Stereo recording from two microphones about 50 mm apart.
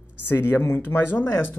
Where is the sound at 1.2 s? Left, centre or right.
Left.